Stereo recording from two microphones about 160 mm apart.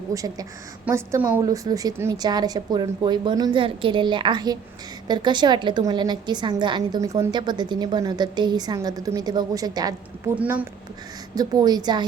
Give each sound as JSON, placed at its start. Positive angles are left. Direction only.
{"t": 0.1, "sound": "a woman's voice", "side_deg": -20}
{"t": 10.3, "sound": "a woman's voice", "side_deg": -10}
{"t": 11.3, "sound": "speech", "side_deg": -25}